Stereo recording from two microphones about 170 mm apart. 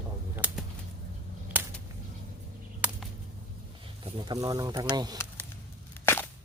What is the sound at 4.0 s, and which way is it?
Speech, 25° right (ahead or behind).